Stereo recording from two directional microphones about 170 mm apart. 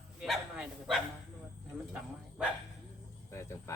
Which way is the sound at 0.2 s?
5° right (ahead or behind).